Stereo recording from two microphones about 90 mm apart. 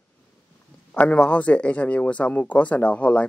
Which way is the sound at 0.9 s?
15° left (ahead or behind).